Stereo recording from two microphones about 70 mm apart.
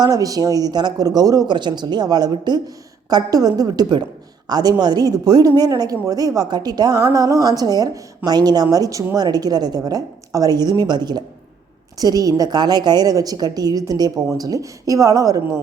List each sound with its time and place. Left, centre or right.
0.0 s speech: right
7.0 s a woman's voice: right
9.1 s speech: right
11.9 s a woman's voice: right